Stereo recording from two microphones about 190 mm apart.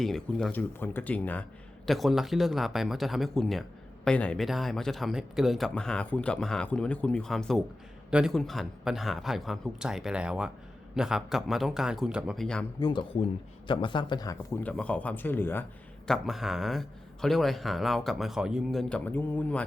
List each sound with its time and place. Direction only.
0.0 s speech: centre (ahead or behind)
12.8 s speech: 25° left (ahead or behind)
14.6 s speech: 5° left (ahead or behind)